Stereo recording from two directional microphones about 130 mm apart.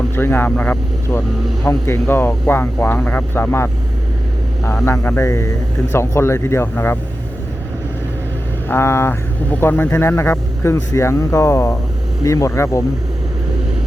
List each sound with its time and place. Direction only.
0.2 s speech: 15° left (ahead or behind)
8.7 s speech: 20° left (ahead or behind)